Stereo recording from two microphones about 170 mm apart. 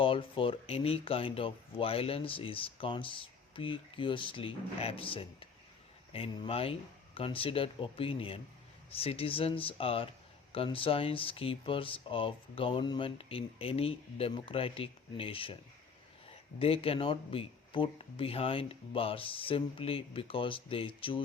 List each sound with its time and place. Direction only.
0.0 s speech: 30° left (ahead or behind)
16.6 s speech: 35° left (ahead or behind)